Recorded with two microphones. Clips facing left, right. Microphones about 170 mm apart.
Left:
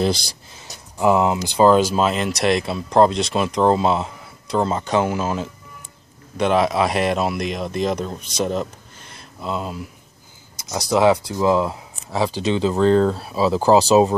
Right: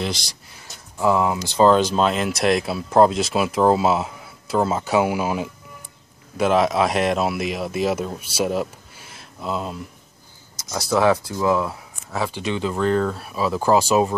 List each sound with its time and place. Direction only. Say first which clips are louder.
0.6 s speech: left 2 dB; 20° left (ahead or behind); by 9.8 s centre (ahead or behind)
10.7 s speech: left 2 dB; 20° left (ahead or behind)
12.2 s speech: left 4 dB; 30° left (ahead or behind)